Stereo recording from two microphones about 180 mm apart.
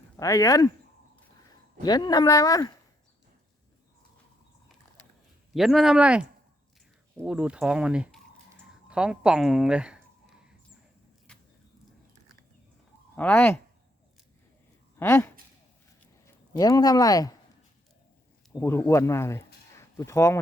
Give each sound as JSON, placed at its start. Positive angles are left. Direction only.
{"t": 0.2, "sound": "speech", "side_deg": 20}
{"t": 5.5, "sound": "speech", "side_deg": 0}
{"t": 11.3, "sound": "a sound", "side_deg": 5}
{"t": 13.1, "sound": "speech", "side_deg": 10}
{"t": 14.9, "sound": "speech", "side_deg": 15}
{"t": 18.5, "sound": "speech", "side_deg": 15}
{"t": 19.7, "sound": "a sound", "side_deg": 15}